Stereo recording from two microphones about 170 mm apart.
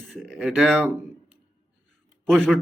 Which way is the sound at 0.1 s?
Centre (ahead or behind).